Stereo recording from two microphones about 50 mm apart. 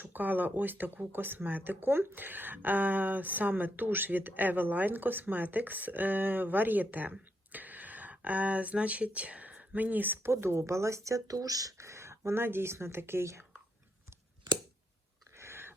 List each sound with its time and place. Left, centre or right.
0.0 s speech: right
10.2 s speech: right
11.8 s speech: right
15.4 s a sound: right